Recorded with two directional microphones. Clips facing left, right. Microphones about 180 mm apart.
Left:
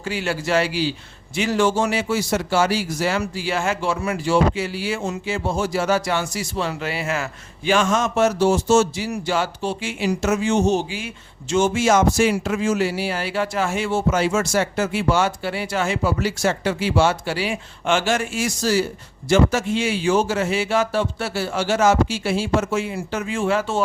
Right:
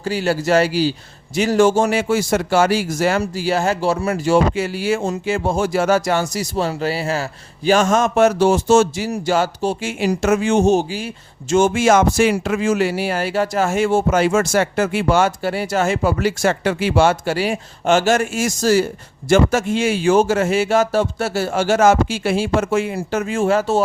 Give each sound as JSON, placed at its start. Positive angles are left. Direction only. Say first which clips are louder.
{"t": 0.0, "sound": "a man's voice", "louder": "right 5 dB", "side_deg": -40}
{"t": 9.0, "sound": "speech", "louder": "right 4 dB", "side_deg": -45}